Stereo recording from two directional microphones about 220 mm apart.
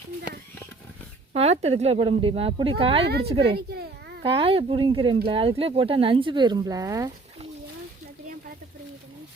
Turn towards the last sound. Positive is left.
turn(degrees=-30)  # may be behind; listen again after turning